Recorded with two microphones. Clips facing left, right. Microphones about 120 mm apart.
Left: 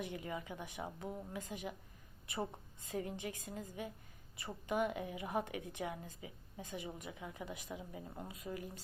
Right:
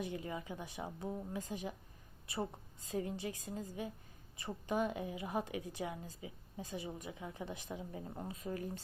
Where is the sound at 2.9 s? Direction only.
25° right (ahead or behind).